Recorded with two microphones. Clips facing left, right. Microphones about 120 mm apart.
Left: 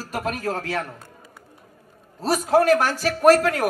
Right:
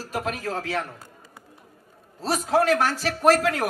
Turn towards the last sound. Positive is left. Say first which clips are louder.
# left 4 dB
turn(degrees=50)  # may be behind; listen again after turning